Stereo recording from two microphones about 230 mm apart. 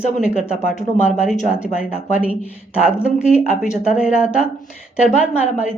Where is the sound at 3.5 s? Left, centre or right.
Left.